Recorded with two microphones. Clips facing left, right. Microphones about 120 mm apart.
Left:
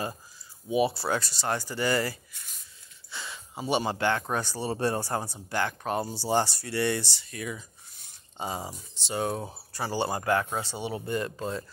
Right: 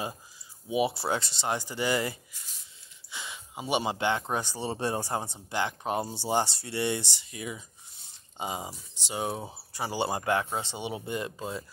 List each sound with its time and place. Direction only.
0.7 s speech: 15° right (ahead or behind)